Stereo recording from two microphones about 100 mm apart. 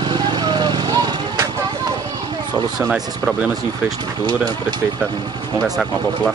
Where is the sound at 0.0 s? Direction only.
50° right (ahead or behind).